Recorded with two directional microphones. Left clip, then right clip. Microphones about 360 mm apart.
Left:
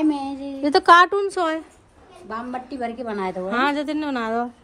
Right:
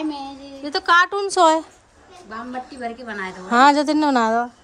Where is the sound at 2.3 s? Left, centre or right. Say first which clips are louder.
Left 1 dB; centre.